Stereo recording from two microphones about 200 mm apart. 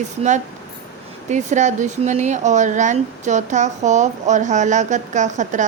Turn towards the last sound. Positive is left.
turn(degrees=-35)  # may be behind; listen again after turning